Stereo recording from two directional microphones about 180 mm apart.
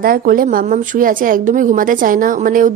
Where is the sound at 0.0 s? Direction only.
55° right (ahead or behind).